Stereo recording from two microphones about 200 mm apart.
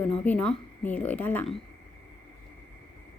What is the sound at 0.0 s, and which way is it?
A woman's voice, 5° left (ahead or behind).